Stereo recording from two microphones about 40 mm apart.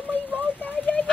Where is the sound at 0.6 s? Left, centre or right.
Left.